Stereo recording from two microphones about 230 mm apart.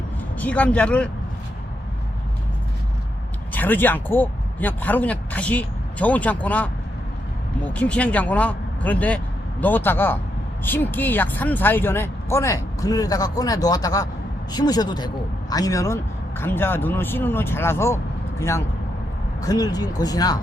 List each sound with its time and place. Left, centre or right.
0.3 s speech: centre
3.5 s speech: centre